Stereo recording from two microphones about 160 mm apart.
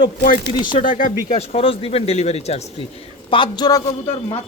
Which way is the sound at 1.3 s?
40° left (ahead or behind).